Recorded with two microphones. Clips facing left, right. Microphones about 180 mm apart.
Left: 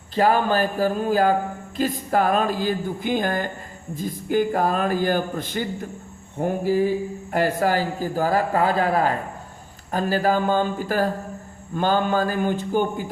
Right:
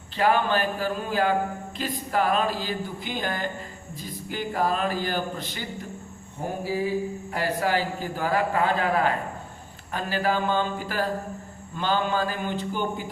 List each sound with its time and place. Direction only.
0.2 s a man's voice: 40° left (ahead or behind)
6.4 s a sound: 55° left (ahead or behind)
7.3 s a man's voice: 45° left (ahead or behind)